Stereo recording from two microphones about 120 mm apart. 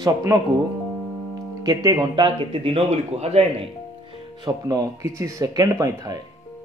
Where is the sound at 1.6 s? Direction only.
35° right (ahead or behind); by 3.4 s 60° right (ahead or behind).